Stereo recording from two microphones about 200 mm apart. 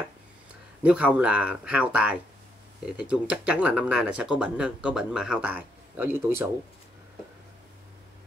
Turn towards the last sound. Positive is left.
turn(degrees=-10)  # may be behind; listen again after turning